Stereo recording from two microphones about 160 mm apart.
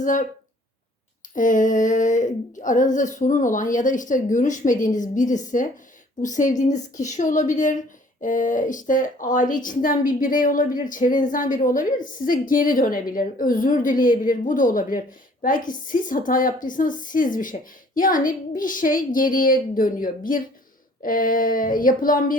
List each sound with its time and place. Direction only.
0.0 s speech: 50° left (ahead or behind)
1.4 s a woman's voice: 55° left (ahead or behind)